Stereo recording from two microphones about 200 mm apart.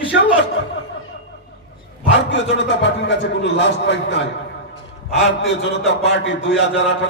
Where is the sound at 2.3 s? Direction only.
65° left (ahead or behind).